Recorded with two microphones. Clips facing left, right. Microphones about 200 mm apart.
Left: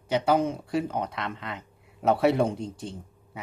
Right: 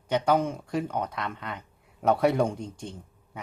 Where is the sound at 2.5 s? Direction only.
35° left (ahead or behind).